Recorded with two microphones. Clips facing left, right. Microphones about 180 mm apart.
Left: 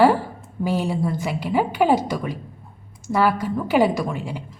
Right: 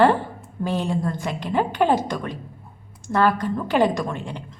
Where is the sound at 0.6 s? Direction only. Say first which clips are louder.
Left 1 dB; 5° left (ahead or behind).